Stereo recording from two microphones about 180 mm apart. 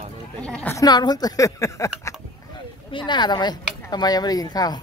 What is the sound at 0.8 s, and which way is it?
A woman's voice, 20° left (ahead or behind).